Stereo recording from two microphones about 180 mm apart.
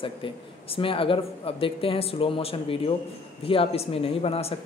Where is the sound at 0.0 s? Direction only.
30° left (ahead or behind).